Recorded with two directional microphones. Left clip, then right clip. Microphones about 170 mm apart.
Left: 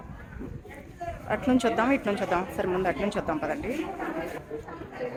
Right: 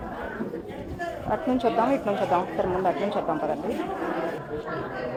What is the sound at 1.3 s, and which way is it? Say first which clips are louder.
A woman's voice: right 1 dB; 25° left (ahead or behind).